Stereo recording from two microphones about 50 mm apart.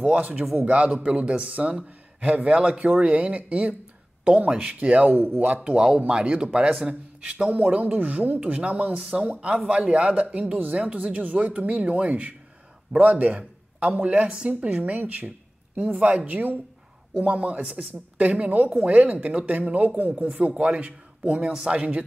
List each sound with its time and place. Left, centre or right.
0.0 s speech: right
5.8 s a man's voice: centre